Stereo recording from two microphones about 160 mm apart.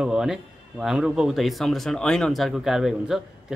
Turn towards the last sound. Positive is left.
turn(degrees=0)  # may be behind; listen again after turning